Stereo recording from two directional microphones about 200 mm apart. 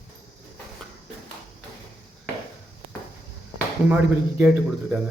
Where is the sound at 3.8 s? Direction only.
10° right (ahead or behind).